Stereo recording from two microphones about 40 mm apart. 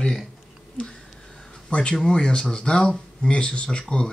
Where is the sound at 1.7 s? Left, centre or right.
Left.